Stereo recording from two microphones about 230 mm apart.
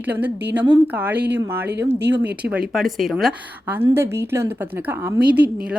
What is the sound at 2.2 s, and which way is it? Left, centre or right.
Speech, right.